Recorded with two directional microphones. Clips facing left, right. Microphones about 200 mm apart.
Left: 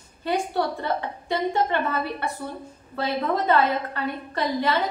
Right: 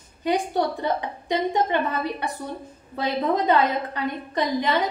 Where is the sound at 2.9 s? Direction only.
15° right (ahead or behind).